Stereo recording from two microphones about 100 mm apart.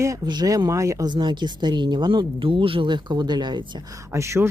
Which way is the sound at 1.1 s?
50° right (ahead or behind).